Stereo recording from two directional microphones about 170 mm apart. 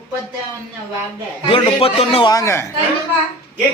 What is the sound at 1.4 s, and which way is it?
Speech, 35° left (ahead or behind).